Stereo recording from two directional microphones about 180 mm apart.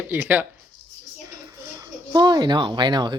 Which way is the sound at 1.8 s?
20° right (ahead or behind).